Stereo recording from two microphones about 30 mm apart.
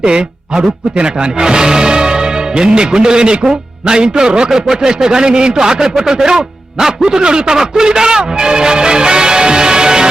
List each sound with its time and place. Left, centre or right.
0.0 s a man's voice: right